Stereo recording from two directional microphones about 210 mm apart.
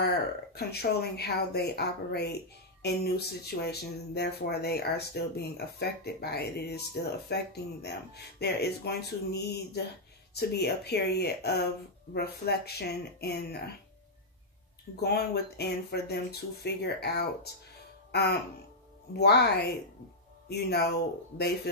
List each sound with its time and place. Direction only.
0.6 s speech: 50° left (ahead or behind)
15.0 s speech: 50° left (ahead or behind)
19.1 s speech: 50° left (ahead or behind)